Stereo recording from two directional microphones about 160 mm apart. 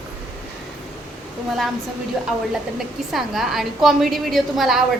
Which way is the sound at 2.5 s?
Centre (ahead or behind).